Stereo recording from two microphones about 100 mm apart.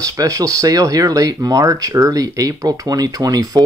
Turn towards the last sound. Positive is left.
turn(degrees=-40)  # may be behind; listen again after turning